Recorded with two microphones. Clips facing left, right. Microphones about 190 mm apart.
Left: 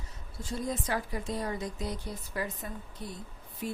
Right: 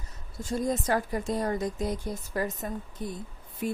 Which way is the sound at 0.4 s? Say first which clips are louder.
Right 6 dB; 45° right (ahead or behind).